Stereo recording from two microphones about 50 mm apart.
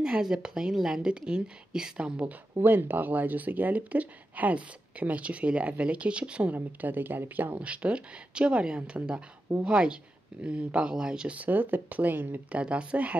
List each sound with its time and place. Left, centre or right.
0.0 s a woman's voice: centre
2.6 s speech: right
6.5 s speech: right
7.5 s speech: right
11.3 s speech: right
12.5 s speech: right